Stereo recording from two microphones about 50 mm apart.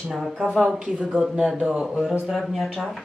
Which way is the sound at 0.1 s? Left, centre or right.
Centre.